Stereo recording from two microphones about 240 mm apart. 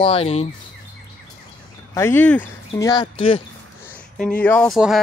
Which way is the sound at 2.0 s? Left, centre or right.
Centre.